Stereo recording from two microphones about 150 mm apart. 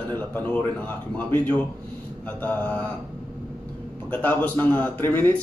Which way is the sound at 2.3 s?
10° left (ahead or behind).